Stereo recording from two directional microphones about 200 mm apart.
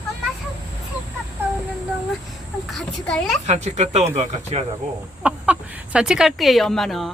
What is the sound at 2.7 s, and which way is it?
Speech, centre (ahead or behind).